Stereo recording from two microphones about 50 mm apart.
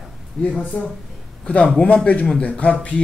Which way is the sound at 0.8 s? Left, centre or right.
Left.